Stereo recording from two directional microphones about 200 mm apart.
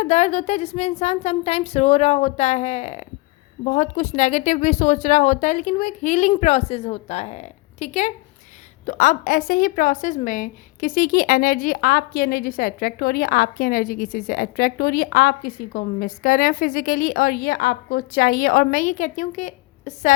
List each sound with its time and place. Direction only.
0.0 s a woman's voice: 35° left (ahead or behind)